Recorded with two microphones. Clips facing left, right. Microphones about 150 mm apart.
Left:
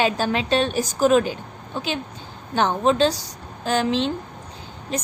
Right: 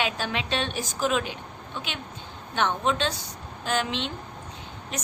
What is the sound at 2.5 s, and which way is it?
A woman's voice, 35° left (ahead or behind).